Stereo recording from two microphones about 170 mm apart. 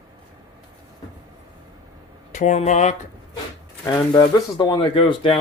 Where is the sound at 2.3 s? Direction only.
45° left (ahead or behind).